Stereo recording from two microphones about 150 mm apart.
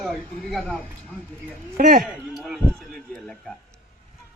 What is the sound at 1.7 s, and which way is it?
Speech, 60° right (ahead or behind).